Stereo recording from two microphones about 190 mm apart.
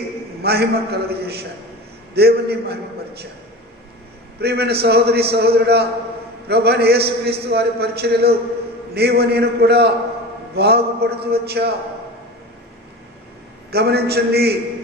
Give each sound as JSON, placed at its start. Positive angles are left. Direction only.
{"t": 0.4, "sound": "a man's voice", "side_deg": -55}
{"t": 4.4, "sound": "a man's voice", "side_deg": -60}
{"t": 13.7, "sound": "a man's voice", "side_deg": -55}